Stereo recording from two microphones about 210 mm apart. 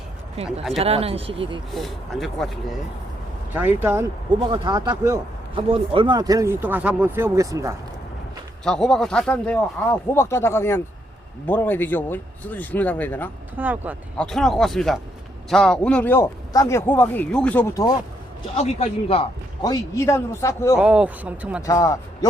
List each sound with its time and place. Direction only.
0.4 s speech: centre (ahead or behind)
0.8 s speech: 30° right (ahead or behind)
1.7 s speech: centre (ahead or behind)
3.5 s speech: 10° right (ahead or behind)
8.6 s a man's voice: 5° left (ahead or behind)
13.6 s speech: 10° right (ahead or behind)
14.2 s a man's voice: centre (ahead or behind)
18.5 s a man's voice: 30° left (ahead or behind)
19.6 s a man's voice: 15° left (ahead or behind)
20.7 s speech: 5° right (ahead or behind)
21.7 s a man's voice: 15° left (ahead or behind)